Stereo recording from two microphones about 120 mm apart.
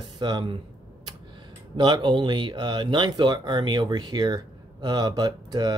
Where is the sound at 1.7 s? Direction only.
40° right (ahead or behind).